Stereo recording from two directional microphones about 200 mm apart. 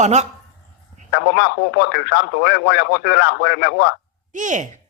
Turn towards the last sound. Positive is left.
turn(degrees=-40)  # may be behind; listen again after turning